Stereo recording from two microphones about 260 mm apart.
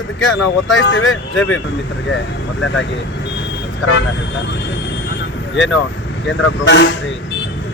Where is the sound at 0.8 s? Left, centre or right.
Left.